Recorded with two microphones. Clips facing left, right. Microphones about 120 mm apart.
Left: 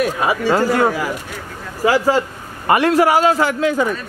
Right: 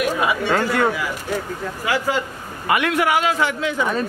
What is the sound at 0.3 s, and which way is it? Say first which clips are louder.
A man's voice: left 4 dB; 35° left (ahead or behind).